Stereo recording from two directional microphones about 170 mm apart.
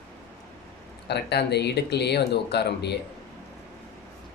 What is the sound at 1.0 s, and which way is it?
Speech, 80° left.